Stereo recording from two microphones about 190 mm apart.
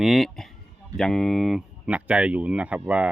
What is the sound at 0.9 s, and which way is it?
Speech, centre (ahead or behind).